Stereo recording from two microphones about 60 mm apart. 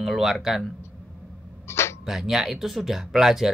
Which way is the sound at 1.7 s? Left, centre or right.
Left.